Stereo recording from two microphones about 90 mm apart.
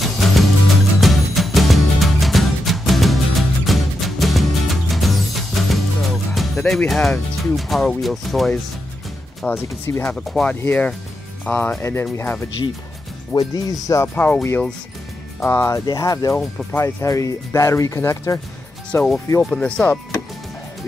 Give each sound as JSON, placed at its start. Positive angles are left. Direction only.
{"t": 0.0, "sound": "music", "side_deg": 0}
{"t": 6.6, "sound": "speech", "side_deg": 10}
{"t": 9.5, "sound": "speech", "side_deg": 25}
{"t": 10.3, "sound": "speech", "side_deg": 0}
{"t": 10.6, "sound": "speech", "side_deg": 20}
{"t": 13.3, "sound": "speech", "side_deg": 45}
{"t": 14.0, "sound": "speech", "side_deg": 20}
{"t": 15.9, "sound": "speech", "side_deg": 45}
{"t": 19.4, "sound": "speech", "side_deg": 5}